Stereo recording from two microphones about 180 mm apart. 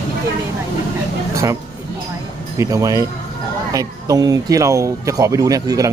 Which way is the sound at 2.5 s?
20° right (ahead or behind).